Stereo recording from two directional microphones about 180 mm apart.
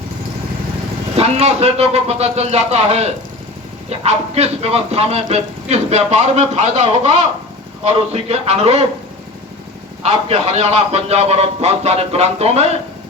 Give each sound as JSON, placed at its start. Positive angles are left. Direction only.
{"t": 1.1, "sound": "speech", "side_deg": -35}
{"t": 10.0, "sound": "speech", "side_deg": -35}